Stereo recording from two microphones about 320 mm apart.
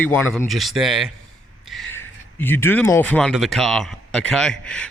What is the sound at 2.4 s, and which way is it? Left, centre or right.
Speech, centre.